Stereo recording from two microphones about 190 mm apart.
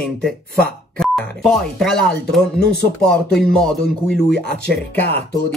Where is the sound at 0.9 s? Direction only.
Centre (ahead or behind).